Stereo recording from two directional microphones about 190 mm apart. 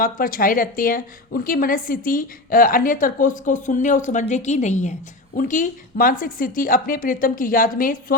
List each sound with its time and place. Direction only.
0.0 s a woman's voice: 50° left (ahead or behind)